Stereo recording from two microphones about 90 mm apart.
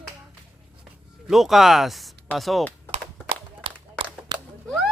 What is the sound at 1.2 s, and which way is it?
Speech, centre (ahead or behind).